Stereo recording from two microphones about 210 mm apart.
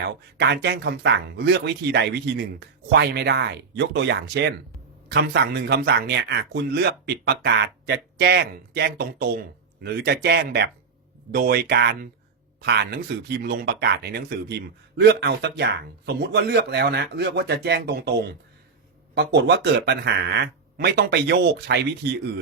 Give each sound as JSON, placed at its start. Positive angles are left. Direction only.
{"t": 0.0, "sound": "speech", "side_deg": -55}